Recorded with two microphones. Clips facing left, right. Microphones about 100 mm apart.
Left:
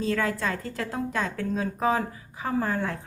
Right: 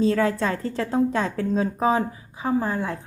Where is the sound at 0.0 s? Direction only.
30° right (ahead or behind).